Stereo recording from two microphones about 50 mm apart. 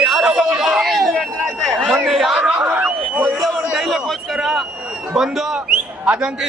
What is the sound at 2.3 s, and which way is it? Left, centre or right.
Speech, right.